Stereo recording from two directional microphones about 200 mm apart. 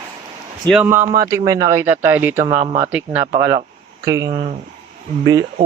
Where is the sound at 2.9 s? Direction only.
10° right (ahead or behind).